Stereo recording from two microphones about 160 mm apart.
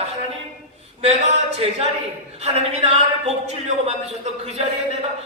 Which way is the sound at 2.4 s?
40° right (ahead or behind).